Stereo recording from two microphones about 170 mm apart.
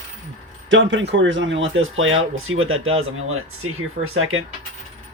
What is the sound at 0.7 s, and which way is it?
Speech, 90° right.